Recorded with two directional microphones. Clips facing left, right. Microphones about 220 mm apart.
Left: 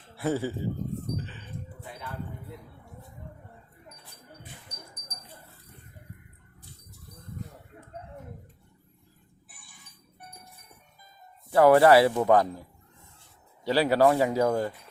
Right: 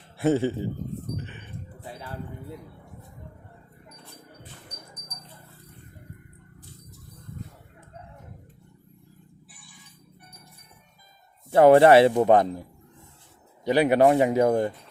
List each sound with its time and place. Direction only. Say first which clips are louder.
0.2 s speech: right 6 dB; 25° right (ahead or behind)
1.1 s a sound: even; 20° right (ahead or behind)
1.8 s a sound: right 5 dB; 35° right (ahead or behind)
9.5 s chink: right 5 dB; 50° left (ahead or behind)
11.5 s speech: right 3 dB; 25° right (ahead or behind)
13.7 s speech: right 3 dB; 20° right (ahead or behind)